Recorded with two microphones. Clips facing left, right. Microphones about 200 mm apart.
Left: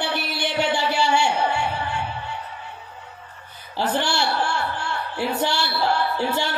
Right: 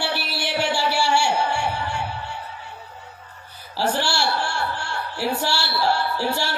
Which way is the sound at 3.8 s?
20° left (ahead or behind).